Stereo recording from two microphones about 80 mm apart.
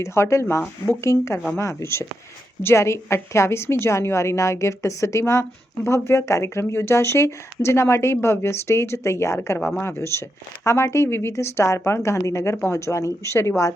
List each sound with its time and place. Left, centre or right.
0.0 s a woman's voice: left
9.6 s speech: centre
9.8 s a woman's voice: left